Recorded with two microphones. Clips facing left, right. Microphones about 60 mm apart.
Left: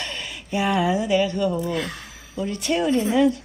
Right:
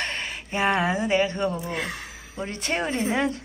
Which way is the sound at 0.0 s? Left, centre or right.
Right.